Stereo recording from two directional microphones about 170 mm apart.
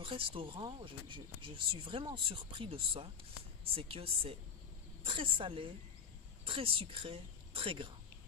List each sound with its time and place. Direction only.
0.0 s speech: 30° right (ahead or behind)